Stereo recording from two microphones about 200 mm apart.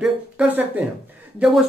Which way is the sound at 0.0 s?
5° right (ahead or behind).